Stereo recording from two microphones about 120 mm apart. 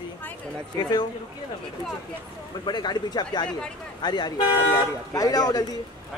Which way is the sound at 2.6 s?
35° left (ahead or behind).